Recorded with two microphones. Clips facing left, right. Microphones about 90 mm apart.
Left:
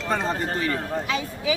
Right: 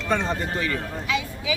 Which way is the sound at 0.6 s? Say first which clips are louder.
Left 2 dB; 35° left (ahead or behind).